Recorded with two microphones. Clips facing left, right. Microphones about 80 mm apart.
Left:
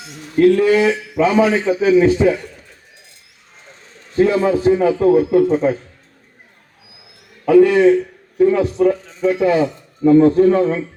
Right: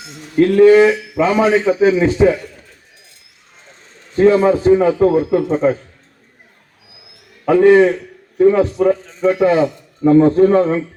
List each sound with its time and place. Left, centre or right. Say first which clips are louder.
0.3 s a man's voice: right 4 dB; right
4.1 s a man's voice: right 3 dB; right
7.4 s a man's voice: right 1 dB; right